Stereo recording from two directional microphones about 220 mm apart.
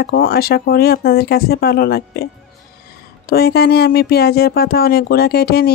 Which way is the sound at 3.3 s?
45° left (ahead or behind).